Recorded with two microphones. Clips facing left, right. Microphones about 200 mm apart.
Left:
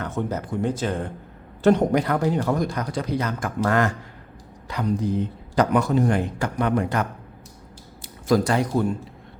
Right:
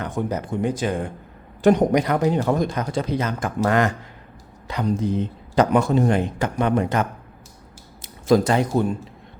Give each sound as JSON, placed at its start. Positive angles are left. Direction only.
{"t": 0.0, "sound": "speech", "side_deg": -15}